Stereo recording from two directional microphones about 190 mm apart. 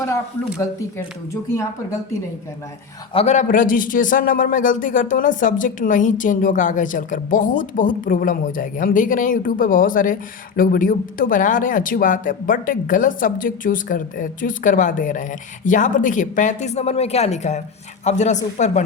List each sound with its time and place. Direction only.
0.6 s speech: 15° left (ahead or behind)
3.2 s a man's voice: 40° left (ahead or behind)